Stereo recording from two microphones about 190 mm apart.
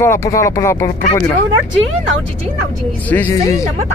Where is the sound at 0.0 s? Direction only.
15° left (ahead or behind).